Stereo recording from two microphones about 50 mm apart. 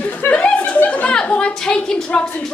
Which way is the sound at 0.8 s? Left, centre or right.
Left.